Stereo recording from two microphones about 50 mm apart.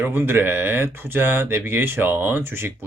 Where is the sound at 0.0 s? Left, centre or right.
Right.